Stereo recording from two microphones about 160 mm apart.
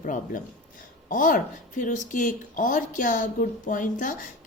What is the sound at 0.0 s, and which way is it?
A woman's voice, 55° left (ahead or behind).